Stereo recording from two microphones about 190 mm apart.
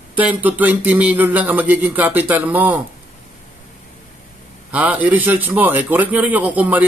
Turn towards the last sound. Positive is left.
turn(degrees=-5)  # may be behind; listen again after turning